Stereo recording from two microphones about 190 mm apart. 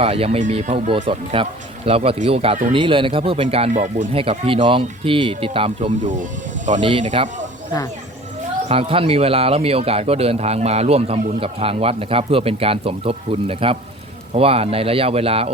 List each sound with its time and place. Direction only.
0.0 s speech: 30° right (ahead or behind)
8.7 s speech: 30° right (ahead or behind)